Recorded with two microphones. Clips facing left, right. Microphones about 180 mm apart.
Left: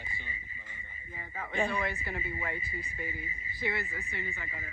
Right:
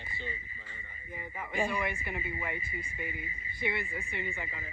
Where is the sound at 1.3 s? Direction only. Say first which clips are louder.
Left 1 dB; 15° right (ahead or behind).